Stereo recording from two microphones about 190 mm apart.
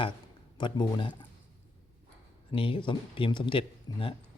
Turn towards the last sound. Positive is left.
turn(degrees=25)  # may be behind; listen again after turning